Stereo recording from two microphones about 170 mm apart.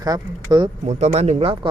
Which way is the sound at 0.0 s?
25° right (ahead or behind).